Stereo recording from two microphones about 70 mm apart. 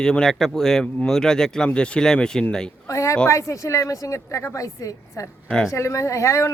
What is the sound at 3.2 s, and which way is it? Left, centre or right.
Speech, left.